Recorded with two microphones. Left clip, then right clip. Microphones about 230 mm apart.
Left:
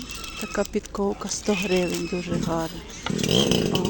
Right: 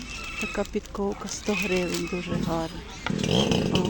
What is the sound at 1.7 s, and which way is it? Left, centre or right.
Speech, centre.